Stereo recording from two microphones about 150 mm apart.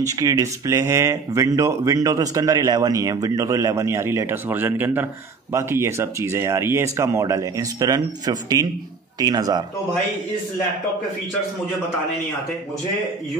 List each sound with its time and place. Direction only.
0.1 s speech: 25° right (ahead or behind)